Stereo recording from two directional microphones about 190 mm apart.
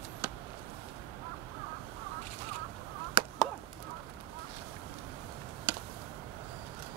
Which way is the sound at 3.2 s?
25° right (ahead or behind).